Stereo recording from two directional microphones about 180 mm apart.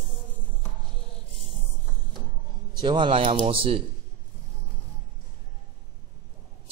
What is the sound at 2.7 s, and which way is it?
Speech, 25° right (ahead or behind).